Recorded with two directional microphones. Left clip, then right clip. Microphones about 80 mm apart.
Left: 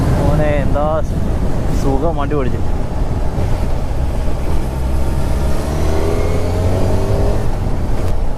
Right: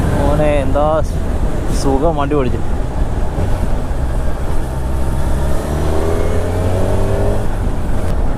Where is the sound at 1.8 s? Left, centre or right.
Right.